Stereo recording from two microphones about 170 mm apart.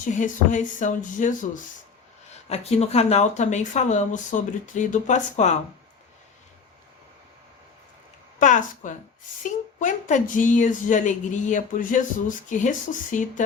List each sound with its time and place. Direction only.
0.0 s speech: 50° left (ahead or behind)
2.5 s speech: 40° left (ahead or behind)
8.4 s speech: 50° left (ahead or behind)